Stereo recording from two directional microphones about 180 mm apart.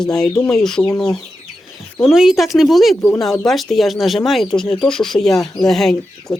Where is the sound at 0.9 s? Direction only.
15° left (ahead or behind).